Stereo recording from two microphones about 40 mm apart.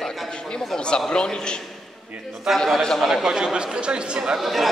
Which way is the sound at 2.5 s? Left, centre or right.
Centre.